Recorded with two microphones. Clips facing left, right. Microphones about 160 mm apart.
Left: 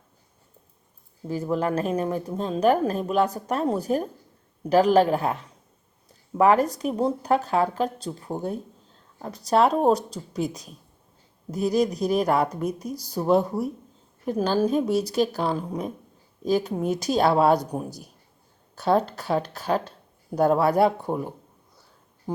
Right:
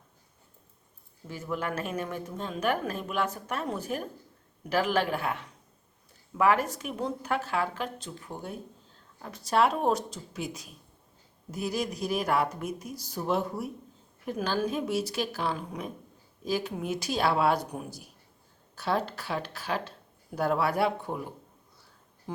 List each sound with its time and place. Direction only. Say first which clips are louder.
1.3 s speech: left 8 dB; 35° left (ahead or behind)